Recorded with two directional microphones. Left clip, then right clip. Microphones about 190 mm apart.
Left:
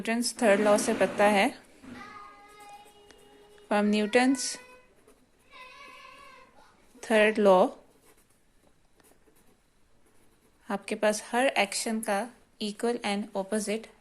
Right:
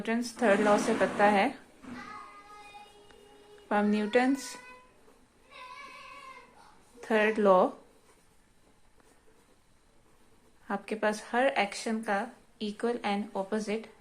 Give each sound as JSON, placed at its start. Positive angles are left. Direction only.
{"t": 0.0, "sound": "speech", "side_deg": 35}
{"t": 3.7, "sound": "speech", "side_deg": 30}
{"t": 7.0, "sound": "a woman's voice", "side_deg": 30}
{"t": 10.7, "sound": "speech", "side_deg": 30}